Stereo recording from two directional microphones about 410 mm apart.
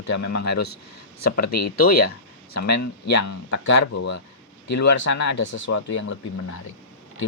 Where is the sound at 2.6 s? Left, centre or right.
Left.